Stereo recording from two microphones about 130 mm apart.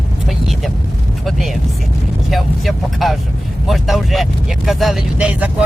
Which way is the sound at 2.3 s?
Centre (ahead or behind).